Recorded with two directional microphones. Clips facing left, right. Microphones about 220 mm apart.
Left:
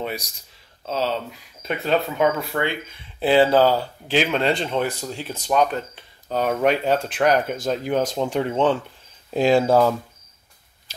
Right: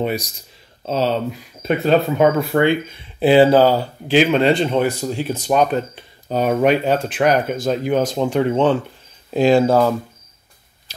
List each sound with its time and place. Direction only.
0.0 s speech: 15° right (ahead or behind)
1.6 s speech: 45° right (ahead or behind)
3.2 s speech: 15° right (ahead or behind); by 9.9 s 5° left (ahead or behind)